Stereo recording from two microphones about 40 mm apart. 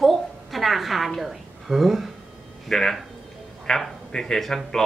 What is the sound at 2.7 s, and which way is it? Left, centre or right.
Speech, centre.